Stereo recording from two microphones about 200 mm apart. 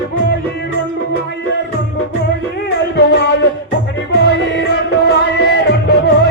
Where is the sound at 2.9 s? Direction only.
60° left (ahead or behind).